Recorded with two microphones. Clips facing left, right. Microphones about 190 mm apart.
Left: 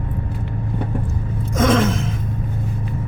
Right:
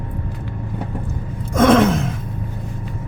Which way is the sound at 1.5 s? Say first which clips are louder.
Right 4 dB; 55° right (ahead or behind).